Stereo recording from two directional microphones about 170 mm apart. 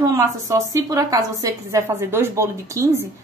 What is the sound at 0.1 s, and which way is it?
A woman's voice, 20° right (ahead or behind).